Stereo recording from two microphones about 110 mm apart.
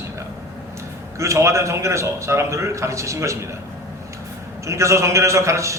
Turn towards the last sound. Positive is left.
turn(degrees=-25)  # may be behind; listen again after turning